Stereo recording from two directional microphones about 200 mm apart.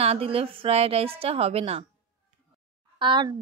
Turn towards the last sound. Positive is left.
turn(degrees=-25)  # may be behind; listen again after turning